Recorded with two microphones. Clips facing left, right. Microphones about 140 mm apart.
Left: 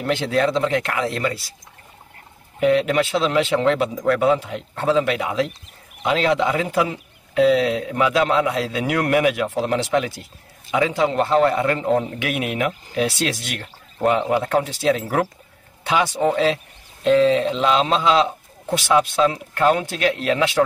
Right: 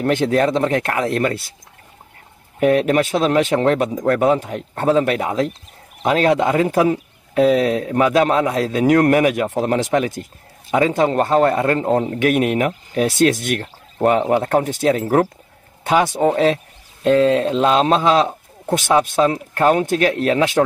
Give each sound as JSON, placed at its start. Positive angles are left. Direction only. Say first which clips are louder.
{"t": 0.0, "sound": "a man's voice", "louder": "right 4 dB", "side_deg": -50}
{"t": 2.6, "sound": "a man's voice", "louder": "right 2 dB", "side_deg": -50}
{"t": 3.9, "sound": "speech", "louder": "right 2 dB", "side_deg": -35}
{"t": 4.2, "sound": "a man's voice", "louder": "right 2 dB", "side_deg": -45}